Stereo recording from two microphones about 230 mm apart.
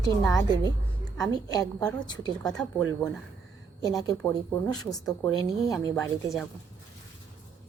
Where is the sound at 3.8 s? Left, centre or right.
Centre.